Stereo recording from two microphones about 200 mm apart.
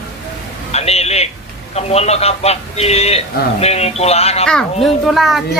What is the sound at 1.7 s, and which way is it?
Speech, 30° left (ahead or behind).